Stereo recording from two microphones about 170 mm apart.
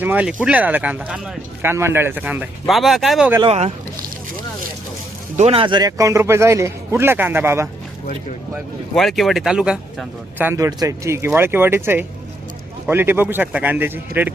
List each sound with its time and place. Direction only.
0.0 s speech: 10° right (ahead or behind)
3.4 s speech: 40° right (ahead or behind)
5.4 s speech: 35° right (ahead or behind); by 7.7 s 15° right (ahead or behind)
9.0 s speech: centre (ahead or behind)